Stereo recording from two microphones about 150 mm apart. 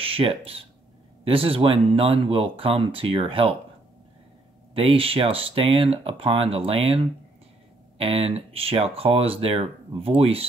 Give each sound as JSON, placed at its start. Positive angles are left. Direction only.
{"t": 0.0, "sound": "speech", "side_deg": -40}
{"t": 4.7, "sound": "speech", "side_deg": -40}
{"t": 8.0, "sound": "speech", "side_deg": -40}